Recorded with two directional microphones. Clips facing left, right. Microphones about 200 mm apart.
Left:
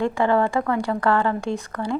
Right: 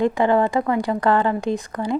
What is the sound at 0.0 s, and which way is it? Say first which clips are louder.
Speech: right 2 dB; 15° right (ahead or behind).